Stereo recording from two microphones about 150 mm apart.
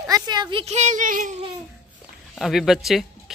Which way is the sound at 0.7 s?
55° right (ahead or behind).